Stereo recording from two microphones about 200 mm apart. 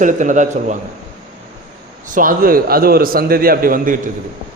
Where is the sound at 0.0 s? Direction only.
40° right (ahead or behind).